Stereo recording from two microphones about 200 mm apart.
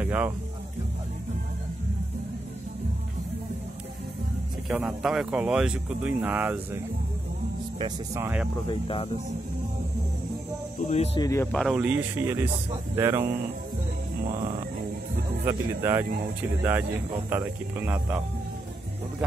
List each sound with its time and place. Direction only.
0.0 s speech: 5° right (ahead or behind)
4.6 s speech: 5° right (ahead or behind)
7.8 s speech: 15° right (ahead or behind)
8.6 s speech: 25° left (ahead or behind)
10.8 s speech: 35° left (ahead or behind)
11.1 s speech: 15° left (ahead or behind)
11.5 s speech: centre (ahead or behind)
14.2 s music: 35° right (ahead or behind)
15.4 s speech: 15° right (ahead or behind)
17.3 s speech: 10° right (ahead or behind)